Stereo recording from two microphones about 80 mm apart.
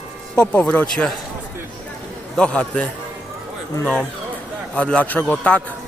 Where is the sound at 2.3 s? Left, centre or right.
Centre.